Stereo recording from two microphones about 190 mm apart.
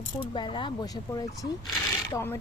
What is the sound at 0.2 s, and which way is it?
Speech, 25° left (ahead or behind).